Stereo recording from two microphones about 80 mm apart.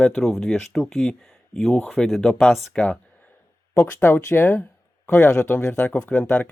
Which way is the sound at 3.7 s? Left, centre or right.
Left.